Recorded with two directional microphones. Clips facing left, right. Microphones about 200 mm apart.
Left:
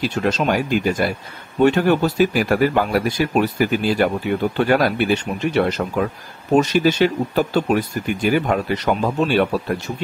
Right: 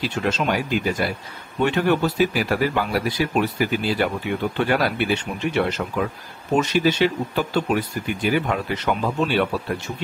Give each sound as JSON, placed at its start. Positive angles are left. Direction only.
{"t": 0.0, "sound": "speech", "side_deg": 40}